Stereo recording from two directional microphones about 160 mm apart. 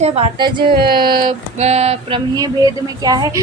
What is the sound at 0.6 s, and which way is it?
Speech, 70° right (ahead or behind).